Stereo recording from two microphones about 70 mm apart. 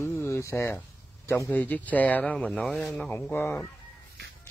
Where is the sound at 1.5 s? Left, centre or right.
Left.